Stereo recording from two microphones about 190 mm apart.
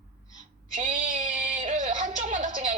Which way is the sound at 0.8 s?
40° right (ahead or behind).